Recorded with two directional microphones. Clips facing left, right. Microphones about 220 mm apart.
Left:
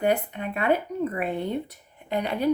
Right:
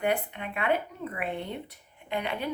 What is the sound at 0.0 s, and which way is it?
Speech, 40° left (ahead or behind).